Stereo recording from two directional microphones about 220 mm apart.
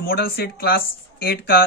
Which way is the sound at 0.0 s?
45° left (ahead or behind).